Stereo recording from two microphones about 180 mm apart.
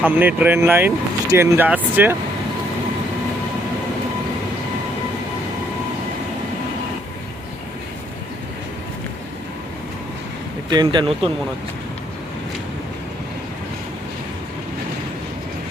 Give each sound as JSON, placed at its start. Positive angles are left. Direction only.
{"t": 0.0, "sound": "speech", "side_deg": -10}
{"t": 10.7, "sound": "speech", "side_deg": -25}